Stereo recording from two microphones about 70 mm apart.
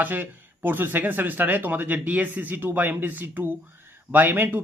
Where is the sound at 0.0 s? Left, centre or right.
Right.